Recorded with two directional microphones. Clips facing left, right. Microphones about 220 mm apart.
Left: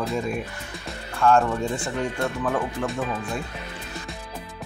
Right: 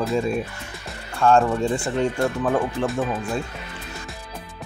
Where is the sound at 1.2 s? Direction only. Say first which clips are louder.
Right 2 dB; 30° right (ahead or behind).